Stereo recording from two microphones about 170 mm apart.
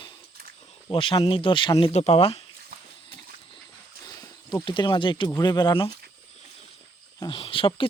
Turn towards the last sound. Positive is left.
turn(degrees=30)  # may be behind; listen again after turning